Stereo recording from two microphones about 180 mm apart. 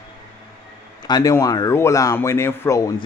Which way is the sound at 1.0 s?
20° left (ahead or behind).